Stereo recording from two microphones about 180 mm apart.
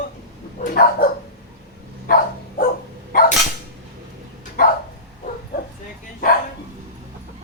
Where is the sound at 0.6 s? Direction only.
55° left (ahead or behind).